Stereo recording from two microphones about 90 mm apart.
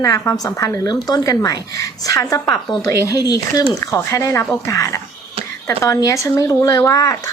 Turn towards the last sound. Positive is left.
turn(degrees=35)  # may be behind; listen again after turning